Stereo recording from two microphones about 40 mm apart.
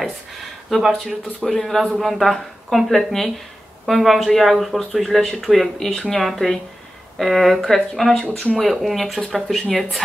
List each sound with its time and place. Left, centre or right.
0.7 s speech: centre
1.0 s a woman's voice: centre